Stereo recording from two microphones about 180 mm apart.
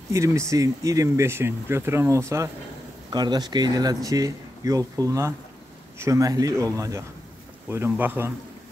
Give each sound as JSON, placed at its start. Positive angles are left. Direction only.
{"t": 0.1, "sound": "speech", "side_deg": -15}